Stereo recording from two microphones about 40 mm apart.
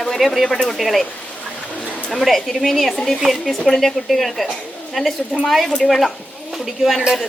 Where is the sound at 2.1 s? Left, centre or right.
Centre.